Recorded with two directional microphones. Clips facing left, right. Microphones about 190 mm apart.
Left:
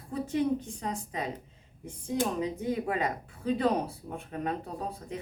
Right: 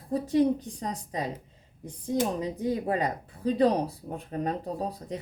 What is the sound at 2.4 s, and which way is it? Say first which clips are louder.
Speech: right 2 dB; 35° right (ahead or behind).